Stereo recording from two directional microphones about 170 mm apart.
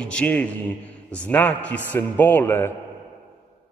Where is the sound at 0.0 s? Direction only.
5° left (ahead or behind).